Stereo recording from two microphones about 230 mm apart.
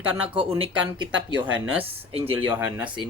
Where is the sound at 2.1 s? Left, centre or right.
Right.